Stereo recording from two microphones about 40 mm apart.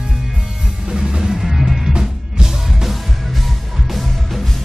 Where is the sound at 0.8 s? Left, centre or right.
Centre.